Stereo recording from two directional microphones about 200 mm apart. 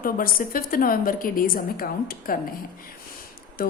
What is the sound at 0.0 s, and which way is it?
A woman's voice, 45° left (ahead or behind).